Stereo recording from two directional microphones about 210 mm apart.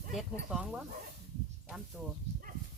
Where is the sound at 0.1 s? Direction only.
Centre (ahead or behind).